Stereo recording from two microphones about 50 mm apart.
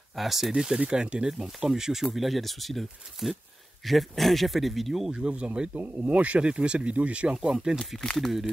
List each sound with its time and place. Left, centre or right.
0.1 s speech: centre
5.1 s speech: right
7.3 s speech: centre
8.0 s speech: centre